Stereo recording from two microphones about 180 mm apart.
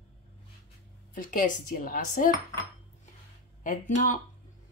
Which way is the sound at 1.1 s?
50° left (ahead or behind).